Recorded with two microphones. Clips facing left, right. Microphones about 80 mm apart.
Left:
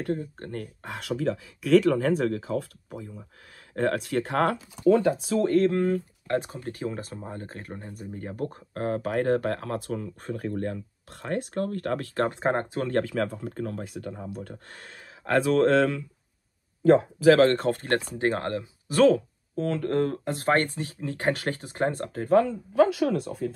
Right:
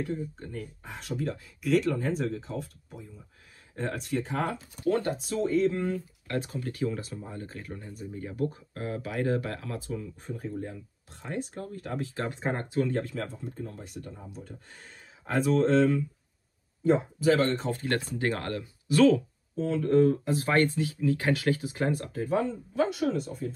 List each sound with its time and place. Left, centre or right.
0.0 s speech: left
6.2 s speech: left
10.3 s speech: left
12.9 s speech: left
17.6 s speech: left
17.9 s speech: left
18.9 s speech: left
22.8 s speech: left